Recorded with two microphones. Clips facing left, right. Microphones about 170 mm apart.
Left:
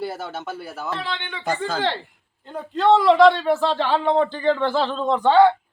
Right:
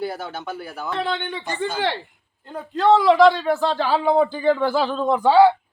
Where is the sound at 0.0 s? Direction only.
Centre (ahead or behind).